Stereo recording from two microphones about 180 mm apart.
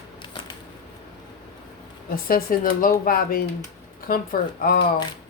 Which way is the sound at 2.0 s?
50° left (ahead or behind).